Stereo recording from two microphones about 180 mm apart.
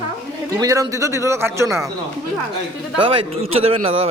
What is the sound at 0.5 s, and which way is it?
A man's voice, 20° right (ahead or behind).